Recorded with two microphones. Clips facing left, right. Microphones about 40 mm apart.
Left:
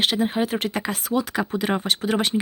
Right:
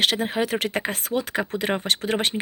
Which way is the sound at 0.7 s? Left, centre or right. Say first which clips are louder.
Left 1 dB; right.